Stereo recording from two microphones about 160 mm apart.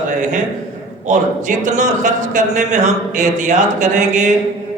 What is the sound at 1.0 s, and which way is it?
A man's voice, 50° right (ahead or behind).